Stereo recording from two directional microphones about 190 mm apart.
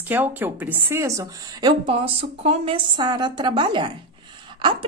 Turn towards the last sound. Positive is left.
turn(degrees=-25)  # may be behind; listen again after turning